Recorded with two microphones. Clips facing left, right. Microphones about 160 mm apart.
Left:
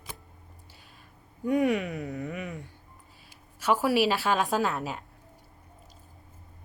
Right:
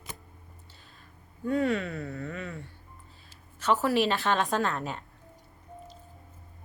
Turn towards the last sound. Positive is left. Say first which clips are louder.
# left 1 dB
turn(degrees=5)  # may be behind; listen again after turning